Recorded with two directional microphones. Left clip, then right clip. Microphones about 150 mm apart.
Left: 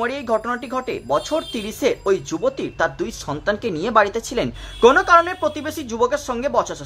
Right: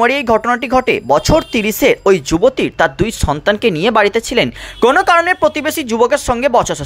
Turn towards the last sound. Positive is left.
turn(degrees=-35)  # may be behind; listen again after turning